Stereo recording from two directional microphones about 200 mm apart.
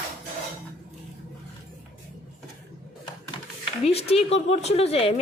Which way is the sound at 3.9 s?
30° left (ahead or behind).